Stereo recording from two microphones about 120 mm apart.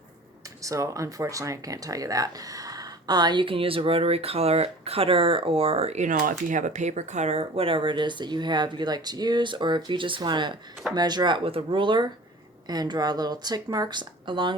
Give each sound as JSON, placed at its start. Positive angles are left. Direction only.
{"t": 0.6, "sound": "speech", "side_deg": -25}